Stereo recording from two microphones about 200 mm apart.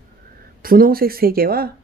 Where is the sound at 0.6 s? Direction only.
45° right (ahead or behind).